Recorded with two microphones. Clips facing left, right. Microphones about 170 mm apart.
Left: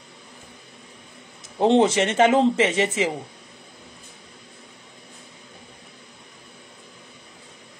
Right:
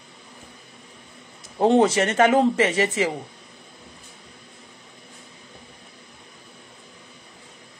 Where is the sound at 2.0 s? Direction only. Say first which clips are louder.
Even; 25° left (ahead or behind).